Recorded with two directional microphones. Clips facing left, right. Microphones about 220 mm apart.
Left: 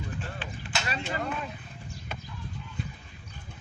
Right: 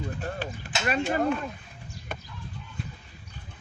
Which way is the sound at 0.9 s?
50° right (ahead or behind).